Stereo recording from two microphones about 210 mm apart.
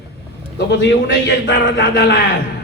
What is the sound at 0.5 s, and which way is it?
A man's voice, 55° left (ahead or behind).